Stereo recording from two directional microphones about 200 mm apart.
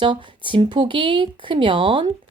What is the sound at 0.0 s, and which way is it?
Speech, 25° right (ahead or behind).